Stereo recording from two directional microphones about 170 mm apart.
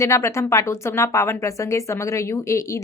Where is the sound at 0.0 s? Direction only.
15° left (ahead or behind).